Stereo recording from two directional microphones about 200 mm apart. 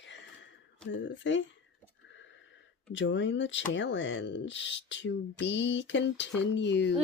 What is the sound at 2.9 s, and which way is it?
Speech, 65° left (ahead or behind).